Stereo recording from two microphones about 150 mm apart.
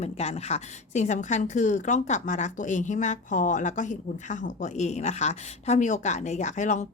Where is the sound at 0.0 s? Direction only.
45° left (ahead or behind).